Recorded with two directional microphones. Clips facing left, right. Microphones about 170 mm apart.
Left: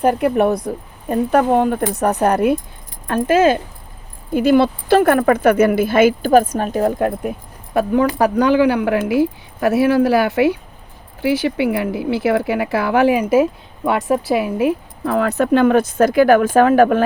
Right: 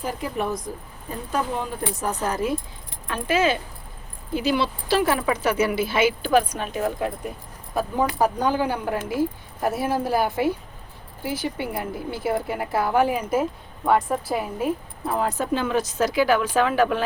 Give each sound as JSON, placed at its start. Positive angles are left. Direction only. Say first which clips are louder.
{"t": 0.0, "sound": "speech", "louder": "left 12 dB", "side_deg": 65}
{"t": 3.1, "sound": "speech", "louder": "left 8 dB", "side_deg": 50}
{"t": 7.0, "sound": "speech", "louder": "left 8 dB", "side_deg": 60}